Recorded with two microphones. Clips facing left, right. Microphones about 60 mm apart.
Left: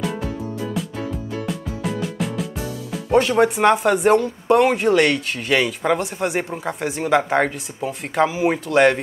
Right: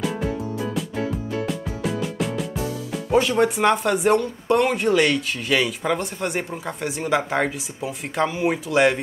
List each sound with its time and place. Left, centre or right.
2.0 s music: centre
3.1 s speech: centre